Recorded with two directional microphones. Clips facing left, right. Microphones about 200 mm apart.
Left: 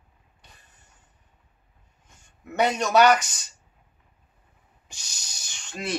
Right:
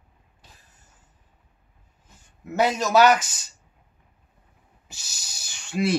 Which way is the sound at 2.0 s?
5° right (ahead or behind).